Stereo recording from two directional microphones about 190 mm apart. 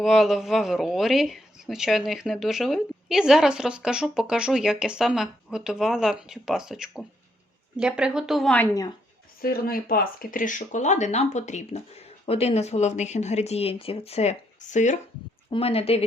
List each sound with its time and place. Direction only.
0.0 s speech: centre (ahead or behind)
9.4 s speech: 50° left (ahead or behind); by 16.0 s 30° left (ahead or behind)